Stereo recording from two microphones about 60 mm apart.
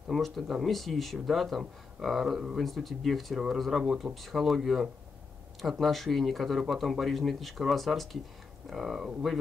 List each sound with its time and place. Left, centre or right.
0.1 s speech: centre
4.1 s speech: centre